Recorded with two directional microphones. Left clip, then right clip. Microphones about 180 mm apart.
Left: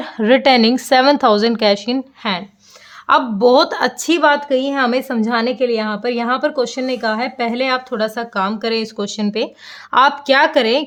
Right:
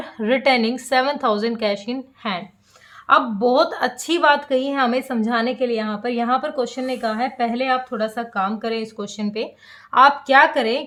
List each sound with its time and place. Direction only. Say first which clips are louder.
0.0 s a woman's voice: left 6 dB; 50° left (ahead or behind)